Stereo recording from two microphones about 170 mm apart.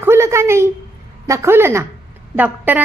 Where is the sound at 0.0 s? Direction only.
15° right (ahead or behind).